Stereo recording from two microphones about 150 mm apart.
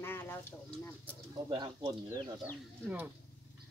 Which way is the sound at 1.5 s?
30° right (ahead or behind).